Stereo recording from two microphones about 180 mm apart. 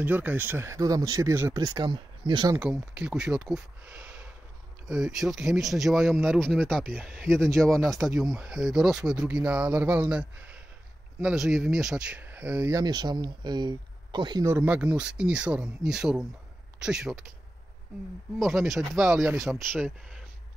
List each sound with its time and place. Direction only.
0.0 s speech: 10° right (ahead or behind); by 2.5 s 25° right (ahead or behind)
2.5 s speech: 5° right (ahead or behind); by 14.4 s 25° right (ahead or behind)
14.4 s speech: 10° right (ahead or behind)
18.4 s speech: centre (ahead or behind)